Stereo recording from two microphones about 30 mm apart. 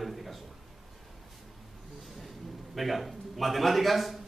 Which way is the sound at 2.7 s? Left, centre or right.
Centre.